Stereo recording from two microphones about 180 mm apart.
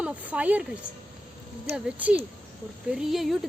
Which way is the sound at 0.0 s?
5° right (ahead or behind).